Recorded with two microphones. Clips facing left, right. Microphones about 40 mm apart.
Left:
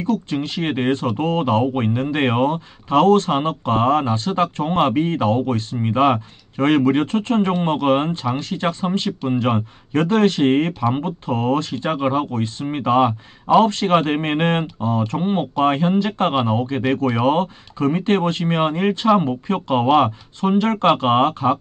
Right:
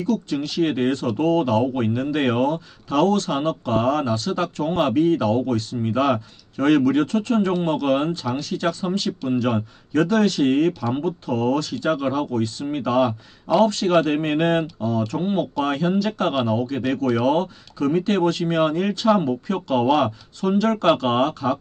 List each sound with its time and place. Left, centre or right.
0.0 s a man's voice: left